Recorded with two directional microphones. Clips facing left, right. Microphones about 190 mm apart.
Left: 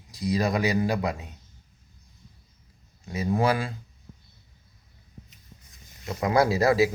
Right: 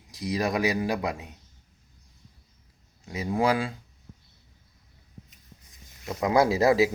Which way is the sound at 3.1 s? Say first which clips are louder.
Left 1 dB; 15° right (ahead or behind).